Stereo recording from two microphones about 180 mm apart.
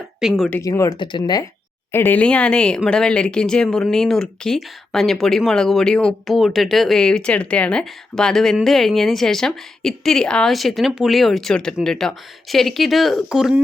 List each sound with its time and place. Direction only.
0.2 s speech: centre (ahead or behind)
0.5 s speech: 15° left (ahead or behind)
1.9 s speech: 10° left (ahead or behind)